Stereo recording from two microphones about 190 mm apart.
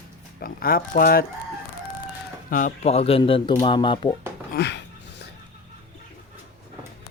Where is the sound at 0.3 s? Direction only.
50° left (ahead or behind).